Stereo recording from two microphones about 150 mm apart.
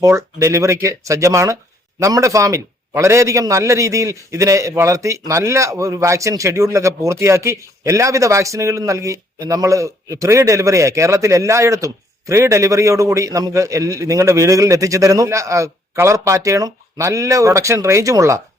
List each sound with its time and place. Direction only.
0.0 s a man's voice: 20° right (ahead or behind)